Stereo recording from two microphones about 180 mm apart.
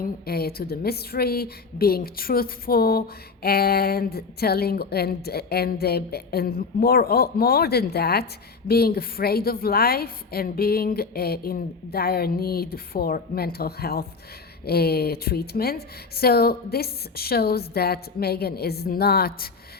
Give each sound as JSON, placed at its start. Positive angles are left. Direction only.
{"t": 0.0, "sound": "speech", "side_deg": 60}